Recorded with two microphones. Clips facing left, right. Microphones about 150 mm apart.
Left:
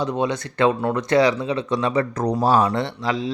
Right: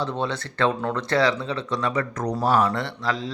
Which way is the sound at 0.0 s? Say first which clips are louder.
Left 4 dB; 15° left (ahead or behind).